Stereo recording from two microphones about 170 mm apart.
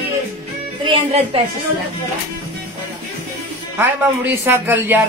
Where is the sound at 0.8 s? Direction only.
30° right (ahead or behind).